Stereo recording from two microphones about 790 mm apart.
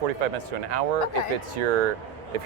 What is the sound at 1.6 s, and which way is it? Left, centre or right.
Speech, right.